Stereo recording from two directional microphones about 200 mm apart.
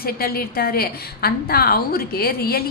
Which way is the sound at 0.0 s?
50° left (ahead or behind).